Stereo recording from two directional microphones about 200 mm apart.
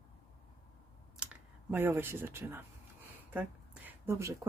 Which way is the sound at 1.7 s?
10° right (ahead or behind).